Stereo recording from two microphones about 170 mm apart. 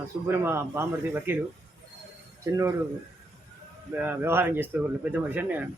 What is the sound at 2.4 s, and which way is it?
Speech, 20° right (ahead or behind).